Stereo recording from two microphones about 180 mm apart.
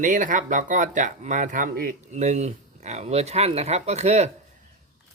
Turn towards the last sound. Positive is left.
turn(degrees=-40)  # may be behind; listen again after turning